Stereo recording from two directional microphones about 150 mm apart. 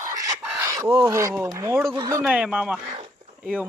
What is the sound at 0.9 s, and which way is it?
Speech, 20° right (ahead or behind).